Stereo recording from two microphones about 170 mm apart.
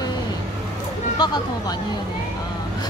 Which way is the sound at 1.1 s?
25° left (ahead or behind).